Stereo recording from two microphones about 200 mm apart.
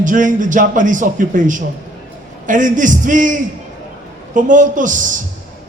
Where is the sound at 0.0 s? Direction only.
40° right (ahead or behind).